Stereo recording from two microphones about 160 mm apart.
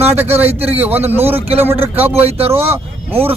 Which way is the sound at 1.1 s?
15° right (ahead or behind).